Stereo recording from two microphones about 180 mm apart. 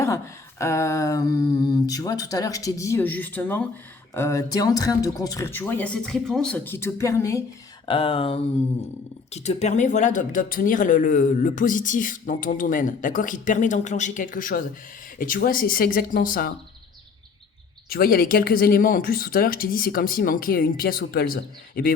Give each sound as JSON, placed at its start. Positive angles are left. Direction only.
{"t": 0.6, "sound": "speech", "side_deg": 15}
{"t": 7.9, "sound": "a sound", "side_deg": 30}
{"t": 9.3, "sound": "speech", "side_deg": 35}
{"t": 17.8, "sound": "speech", "side_deg": 55}